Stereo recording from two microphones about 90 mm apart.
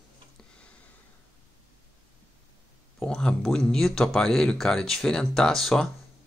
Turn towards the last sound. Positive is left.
turn(degrees=5)  # may be behind; listen again after turning